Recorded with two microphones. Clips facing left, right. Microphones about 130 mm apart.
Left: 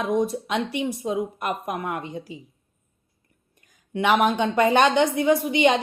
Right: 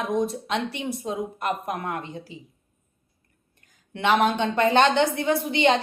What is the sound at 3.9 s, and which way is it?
A woman's voice, 15° left (ahead or behind).